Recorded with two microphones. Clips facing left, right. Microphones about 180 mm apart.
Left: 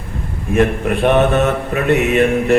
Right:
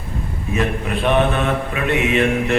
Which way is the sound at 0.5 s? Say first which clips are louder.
Left 7 dB; 50° left (ahead or behind).